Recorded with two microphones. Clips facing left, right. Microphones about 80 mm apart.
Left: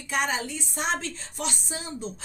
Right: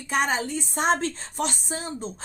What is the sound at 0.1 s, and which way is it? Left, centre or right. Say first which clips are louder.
A woman's voice: right 3 dB; right.